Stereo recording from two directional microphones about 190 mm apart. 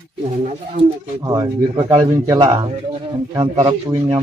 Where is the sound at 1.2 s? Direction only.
20° right (ahead or behind).